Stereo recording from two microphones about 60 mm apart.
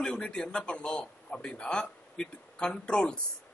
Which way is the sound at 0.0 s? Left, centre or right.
Centre.